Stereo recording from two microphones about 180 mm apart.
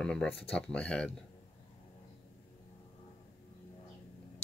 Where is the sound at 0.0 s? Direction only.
5° left (ahead or behind).